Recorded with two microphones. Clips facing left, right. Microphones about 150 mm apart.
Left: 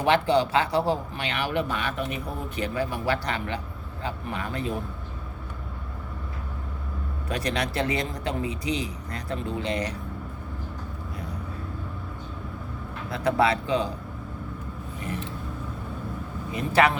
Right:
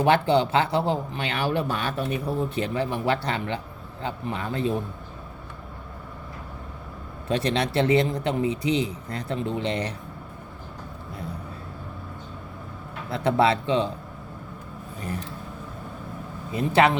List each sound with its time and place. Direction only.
0.0 s a man's voice: 25° right (ahead or behind)
7.3 s a man's voice: 25° right (ahead or behind)
13.1 s a man's voice: 30° right (ahead or behind)
16.7 s a man's voice: 25° right (ahead or behind)